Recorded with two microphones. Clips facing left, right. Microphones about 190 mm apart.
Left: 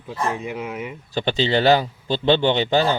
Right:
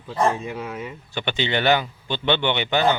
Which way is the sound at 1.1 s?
35° left (ahead or behind).